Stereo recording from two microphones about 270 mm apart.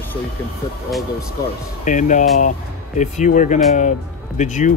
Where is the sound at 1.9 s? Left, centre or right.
Left.